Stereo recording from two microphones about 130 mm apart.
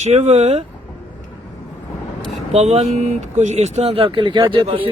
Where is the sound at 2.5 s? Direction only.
55° right (ahead or behind).